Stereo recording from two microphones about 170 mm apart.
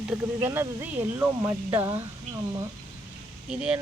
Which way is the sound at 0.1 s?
15° right (ahead or behind).